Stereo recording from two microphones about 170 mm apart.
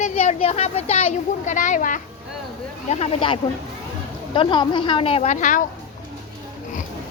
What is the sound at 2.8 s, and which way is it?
A woman's voice, 35° left (ahead or behind).